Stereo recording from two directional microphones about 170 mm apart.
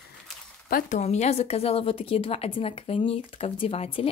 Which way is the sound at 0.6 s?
55° left (ahead or behind).